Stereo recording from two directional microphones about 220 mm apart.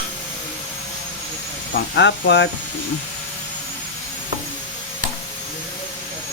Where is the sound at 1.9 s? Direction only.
50° left (ahead or behind).